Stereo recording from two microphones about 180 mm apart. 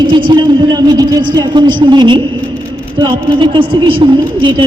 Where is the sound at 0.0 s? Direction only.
25° right (ahead or behind).